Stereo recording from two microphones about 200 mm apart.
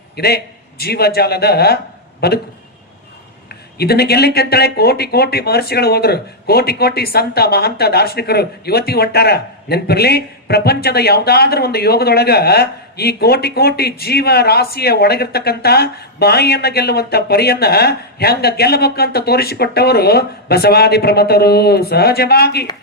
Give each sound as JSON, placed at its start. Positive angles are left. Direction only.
{"t": 0.2, "sound": "speech", "side_deg": 50}
{"t": 3.8, "sound": "speech", "side_deg": 55}